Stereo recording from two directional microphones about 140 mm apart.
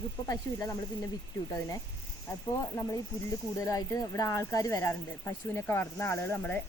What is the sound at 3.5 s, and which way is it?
Speech, 25° left (ahead or behind).